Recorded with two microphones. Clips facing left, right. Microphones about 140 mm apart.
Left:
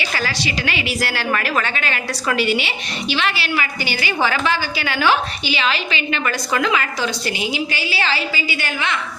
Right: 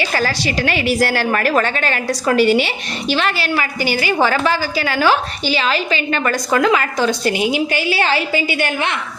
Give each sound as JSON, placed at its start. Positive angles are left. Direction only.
{"t": 0.1, "sound": "a woman's voice", "side_deg": -45}